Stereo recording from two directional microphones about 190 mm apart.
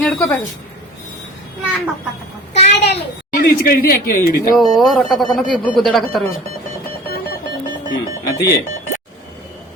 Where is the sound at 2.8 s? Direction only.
60° left (ahead or behind).